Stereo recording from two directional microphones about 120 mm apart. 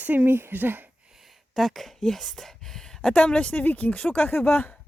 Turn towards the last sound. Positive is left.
turn(degrees=15)  # may be behind; listen again after turning